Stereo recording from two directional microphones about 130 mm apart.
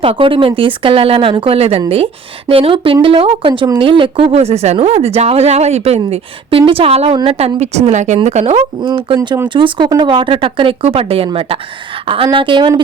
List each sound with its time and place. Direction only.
0.0 s a woman's voice: 45° right (ahead or behind); by 8.6 s 60° right (ahead or behind)
9.0 s speech: 35° right (ahead or behind)